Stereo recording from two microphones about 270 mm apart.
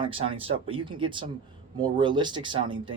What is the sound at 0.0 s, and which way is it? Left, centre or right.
Speech, centre.